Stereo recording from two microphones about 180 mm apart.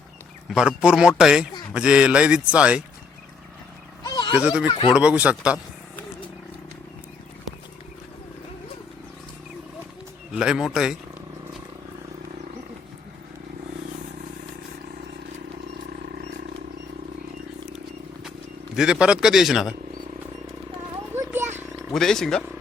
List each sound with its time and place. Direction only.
0.4 s a man's voice: 5° right (ahead or behind)
4.0 s a sound: 25° left (ahead or behind)
4.4 s a man's voice: 5° right (ahead or behind)
10.3 s a man's voice: 5° right (ahead or behind)
18.8 s a man's voice: 5° right (ahead or behind)
21.1 s a sound: 10° right (ahead or behind)
21.9 s a man's voice: 5° left (ahead or behind)